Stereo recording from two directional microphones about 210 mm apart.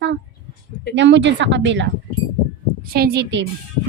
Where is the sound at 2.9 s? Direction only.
50° right (ahead or behind).